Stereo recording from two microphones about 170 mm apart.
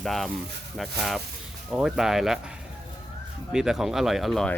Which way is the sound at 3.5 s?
5° right (ahead or behind).